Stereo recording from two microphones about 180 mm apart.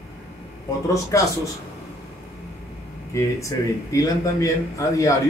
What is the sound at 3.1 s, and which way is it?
A man's voice, 20° left (ahead or behind).